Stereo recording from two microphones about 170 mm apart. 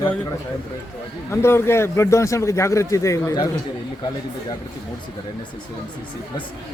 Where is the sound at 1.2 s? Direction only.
15° left (ahead or behind).